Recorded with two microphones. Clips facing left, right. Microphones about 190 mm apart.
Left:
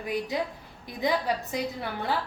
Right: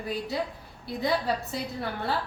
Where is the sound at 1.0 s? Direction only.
15° left (ahead or behind).